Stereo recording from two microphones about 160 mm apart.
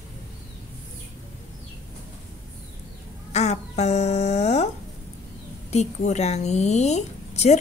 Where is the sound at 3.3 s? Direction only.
45° left (ahead or behind).